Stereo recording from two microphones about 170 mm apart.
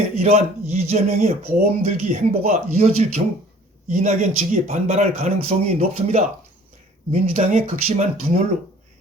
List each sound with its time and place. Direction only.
0.2 s speech: 40° right (ahead or behind)